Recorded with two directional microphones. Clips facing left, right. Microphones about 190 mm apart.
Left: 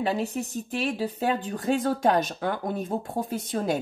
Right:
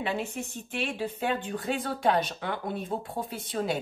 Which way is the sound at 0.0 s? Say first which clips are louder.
Left 5 dB; 40° left (ahead or behind).